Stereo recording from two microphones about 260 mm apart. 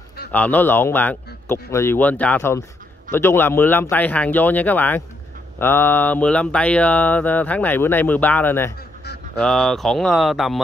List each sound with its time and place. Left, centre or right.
0.3 s speech: centre
9.0 s a sound: left
9.4 s speech: centre